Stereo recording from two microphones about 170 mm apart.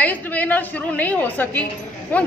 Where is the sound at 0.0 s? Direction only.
10° left (ahead or behind).